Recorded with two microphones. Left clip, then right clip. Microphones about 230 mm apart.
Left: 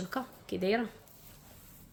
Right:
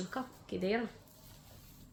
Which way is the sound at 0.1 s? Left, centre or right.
Left.